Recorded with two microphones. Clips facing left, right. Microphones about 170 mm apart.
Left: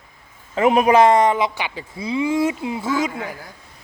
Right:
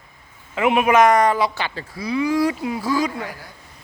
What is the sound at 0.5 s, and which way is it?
Speech, 35° left (ahead or behind).